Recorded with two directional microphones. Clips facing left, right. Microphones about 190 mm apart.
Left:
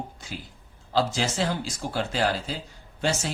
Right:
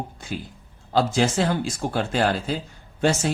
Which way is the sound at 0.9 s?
55° right (ahead or behind).